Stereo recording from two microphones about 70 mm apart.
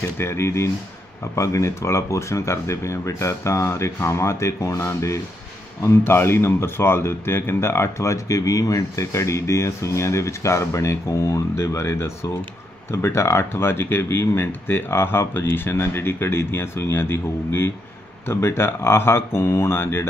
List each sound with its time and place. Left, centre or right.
0.2 s speech: left